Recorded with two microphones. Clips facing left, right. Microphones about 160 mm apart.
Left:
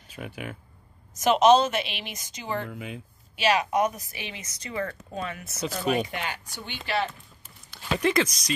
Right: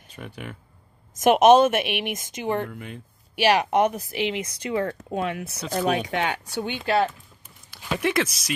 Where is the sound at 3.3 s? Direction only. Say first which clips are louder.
Right 4 dB; 65° right (ahead or behind).